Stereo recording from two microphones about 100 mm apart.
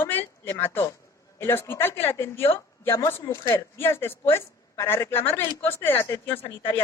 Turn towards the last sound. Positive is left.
turn(degrees=25)  # may be behind; listen again after turning